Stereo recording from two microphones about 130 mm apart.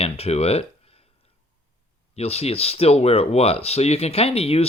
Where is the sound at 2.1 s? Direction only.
55° left (ahead or behind).